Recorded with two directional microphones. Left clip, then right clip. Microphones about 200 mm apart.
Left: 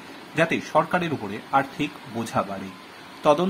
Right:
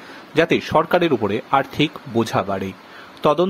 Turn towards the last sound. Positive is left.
turn(degrees=-40)  # may be behind; listen again after turning